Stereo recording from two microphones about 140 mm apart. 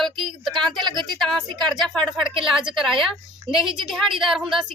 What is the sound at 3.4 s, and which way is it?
Speech, 40° right (ahead or behind).